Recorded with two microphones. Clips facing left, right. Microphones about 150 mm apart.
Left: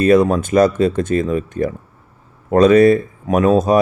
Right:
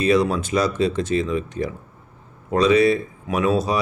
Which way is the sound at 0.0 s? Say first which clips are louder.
Left 6 dB; 50° left (ahead or behind).